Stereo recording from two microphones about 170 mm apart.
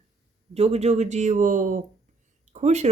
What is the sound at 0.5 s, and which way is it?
Speech, 40° right (ahead or behind).